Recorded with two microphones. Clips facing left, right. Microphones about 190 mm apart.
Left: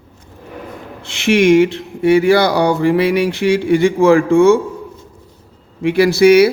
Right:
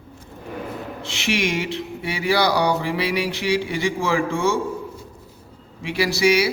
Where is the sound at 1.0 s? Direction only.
55° left (ahead or behind).